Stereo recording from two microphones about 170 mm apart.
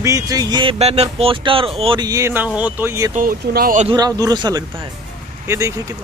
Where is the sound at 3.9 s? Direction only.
20° right (ahead or behind).